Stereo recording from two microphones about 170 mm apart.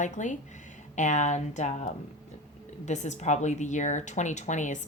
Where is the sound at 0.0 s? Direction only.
45° left (ahead or behind).